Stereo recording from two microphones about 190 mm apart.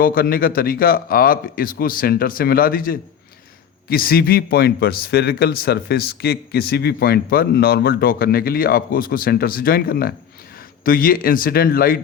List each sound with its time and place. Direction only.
0.0 s a man's voice: 50° left (ahead or behind)